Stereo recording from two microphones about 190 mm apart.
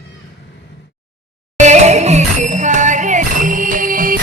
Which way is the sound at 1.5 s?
35° right (ahead or behind).